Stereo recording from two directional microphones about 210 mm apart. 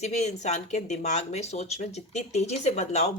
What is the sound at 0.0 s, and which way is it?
A woman's voice, 30° left (ahead or behind).